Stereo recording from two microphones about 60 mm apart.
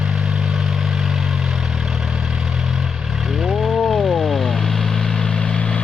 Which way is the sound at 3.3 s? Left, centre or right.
Centre.